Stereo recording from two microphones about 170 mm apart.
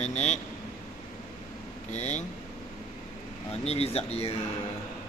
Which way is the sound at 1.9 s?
45° left (ahead or behind).